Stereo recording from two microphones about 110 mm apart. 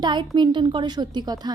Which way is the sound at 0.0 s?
45° right (ahead or behind).